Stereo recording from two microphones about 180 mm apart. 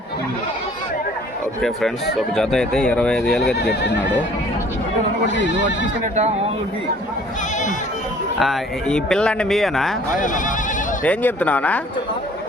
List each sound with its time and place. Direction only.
2.3 s speech: 5° left (ahead or behind)
3.5 s speech: 65° left (ahead or behind)
5.3 s speech: 80° left
8.4 s speech: centre (ahead or behind)
10.2 s speech: 45° left (ahead or behind)
11.0 s speech: 10° left (ahead or behind)